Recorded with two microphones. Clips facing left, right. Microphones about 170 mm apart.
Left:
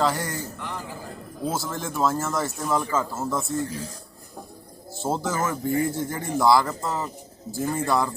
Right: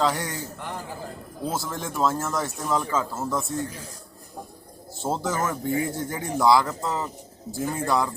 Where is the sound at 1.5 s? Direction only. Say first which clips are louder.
Left 1 dB; centre (ahead or behind).